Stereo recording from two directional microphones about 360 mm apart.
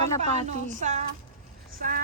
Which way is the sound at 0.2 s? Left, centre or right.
Centre.